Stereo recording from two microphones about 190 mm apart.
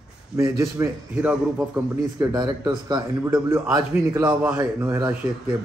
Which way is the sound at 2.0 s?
20° right (ahead or behind).